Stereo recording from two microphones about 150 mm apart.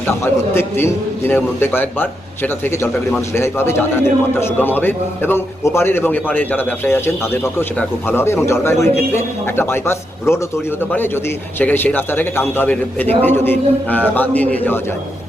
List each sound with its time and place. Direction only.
0.2 s a man's voice: 15° left (ahead or behind)